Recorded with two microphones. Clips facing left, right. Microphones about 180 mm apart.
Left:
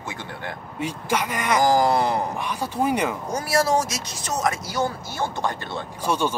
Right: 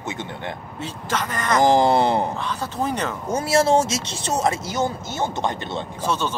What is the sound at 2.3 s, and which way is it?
Speech, 15° left (ahead or behind).